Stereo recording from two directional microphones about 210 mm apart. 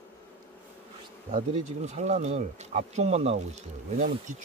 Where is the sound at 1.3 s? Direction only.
30° right (ahead or behind).